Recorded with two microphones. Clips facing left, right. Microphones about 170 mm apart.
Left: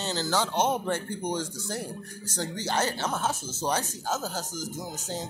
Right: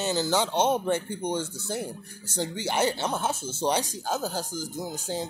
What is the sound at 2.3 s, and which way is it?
Speech, 10° right (ahead or behind).